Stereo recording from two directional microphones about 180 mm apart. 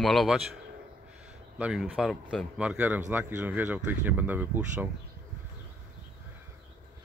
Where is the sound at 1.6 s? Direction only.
5° right (ahead or behind).